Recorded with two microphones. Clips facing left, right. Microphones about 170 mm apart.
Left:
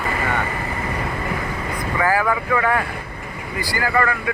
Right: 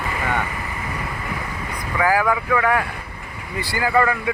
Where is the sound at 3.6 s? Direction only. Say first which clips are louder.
Right 2 dB; 15° right (ahead or behind).